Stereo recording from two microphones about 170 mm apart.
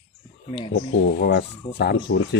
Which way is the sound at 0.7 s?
70° left (ahead or behind).